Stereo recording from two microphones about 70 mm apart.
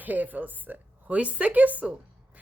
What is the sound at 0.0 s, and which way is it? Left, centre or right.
A woman's voice, right.